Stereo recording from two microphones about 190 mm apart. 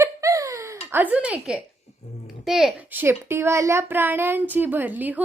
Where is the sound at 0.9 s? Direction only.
10° right (ahead or behind).